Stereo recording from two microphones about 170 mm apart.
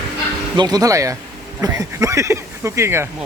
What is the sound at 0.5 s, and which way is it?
Speech, 25° right (ahead or behind).